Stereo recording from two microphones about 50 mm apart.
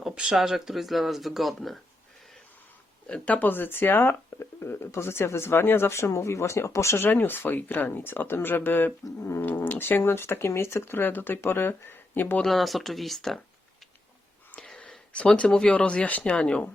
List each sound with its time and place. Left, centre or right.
0.3 s speech: centre
3.1 s speech: left
3.5 s speech: left
5.9 s speech: left
7.0 s speech: left
12.5 s speech: centre
14.6 s a sound: centre
15.4 s speech: centre